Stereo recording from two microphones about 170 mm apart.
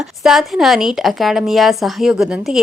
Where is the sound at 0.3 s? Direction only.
Centre (ahead or behind).